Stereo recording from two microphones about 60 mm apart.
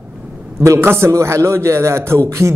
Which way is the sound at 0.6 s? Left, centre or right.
Right.